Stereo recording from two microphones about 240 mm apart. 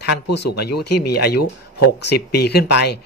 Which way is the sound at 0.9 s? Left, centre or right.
Left.